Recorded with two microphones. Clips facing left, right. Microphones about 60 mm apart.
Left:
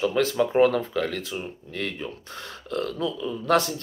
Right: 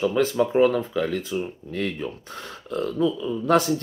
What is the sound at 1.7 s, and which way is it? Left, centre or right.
Speech, right.